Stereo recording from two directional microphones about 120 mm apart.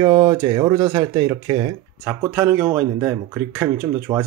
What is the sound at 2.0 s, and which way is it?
Speech, 15° right (ahead or behind).